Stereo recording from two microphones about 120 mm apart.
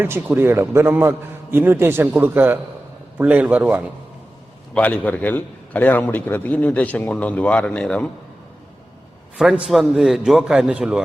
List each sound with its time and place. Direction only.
0.0 s a man's voice: 20° right (ahead or behind)
4.7 s a man's voice: 10° left (ahead or behind)
9.4 s a man's voice: 5° right (ahead or behind)